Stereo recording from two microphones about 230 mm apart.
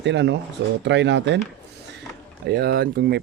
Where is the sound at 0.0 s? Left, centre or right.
Right.